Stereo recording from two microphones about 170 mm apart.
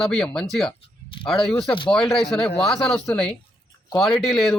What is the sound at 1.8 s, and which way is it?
A man's voice, 5° left (ahead or behind).